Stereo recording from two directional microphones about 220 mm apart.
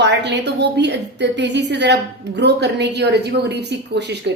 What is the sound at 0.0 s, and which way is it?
A woman's voice, 50° right (ahead or behind).